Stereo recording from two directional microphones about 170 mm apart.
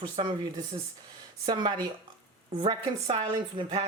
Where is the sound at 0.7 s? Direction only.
30° right (ahead or behind).